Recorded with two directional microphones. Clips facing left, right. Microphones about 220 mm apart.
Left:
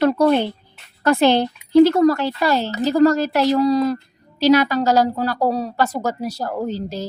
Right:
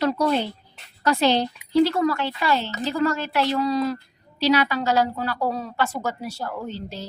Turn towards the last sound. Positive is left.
turn(degrees=40)  # may be behind; listen again after turning